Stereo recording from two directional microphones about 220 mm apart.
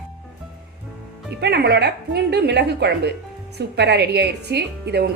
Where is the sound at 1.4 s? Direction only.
50° right (ahead or behind).